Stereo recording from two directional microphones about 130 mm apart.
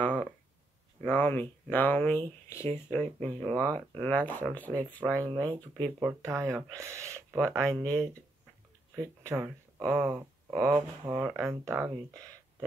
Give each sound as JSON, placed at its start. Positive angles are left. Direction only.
{"t": 0.0, "sound": "a sound", "side_deg": 10}
{"t": 1.0, "sound": "speech", "side_deg": 15}
{"t": 5.9, "sound": "speech", "side_deg": -20}